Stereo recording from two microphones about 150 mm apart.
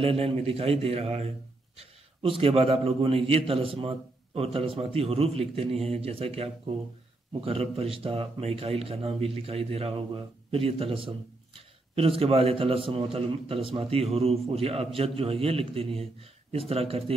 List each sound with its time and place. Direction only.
0.0 s a man's voice: 40° right (ahead or behind)